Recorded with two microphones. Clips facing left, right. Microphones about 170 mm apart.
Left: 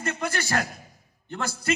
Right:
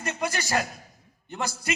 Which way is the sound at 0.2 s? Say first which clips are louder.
Right 3 dB; 15° right (ahead or behind).